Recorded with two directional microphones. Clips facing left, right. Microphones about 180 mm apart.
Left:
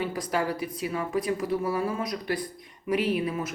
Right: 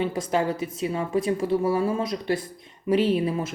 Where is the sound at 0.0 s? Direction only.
25° right (ahead or behind).